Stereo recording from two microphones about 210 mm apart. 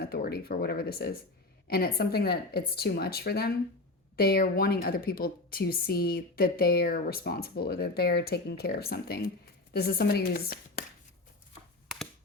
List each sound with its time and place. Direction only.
0.0 s a woman's voice: 50° left (ahead or behind)